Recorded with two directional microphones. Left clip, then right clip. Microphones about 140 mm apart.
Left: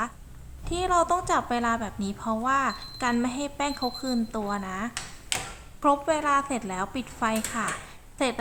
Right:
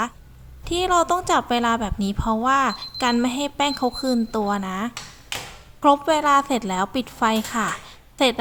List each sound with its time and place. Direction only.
0.6 s a woman's voice: 35° right (ahead or behind)